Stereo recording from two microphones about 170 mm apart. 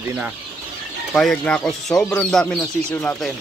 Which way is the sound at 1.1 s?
5° left (ahead or behind).